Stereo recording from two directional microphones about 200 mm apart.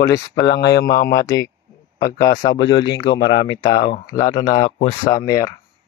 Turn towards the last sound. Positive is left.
turn(degrees=15)  # may be behind; listen again after turning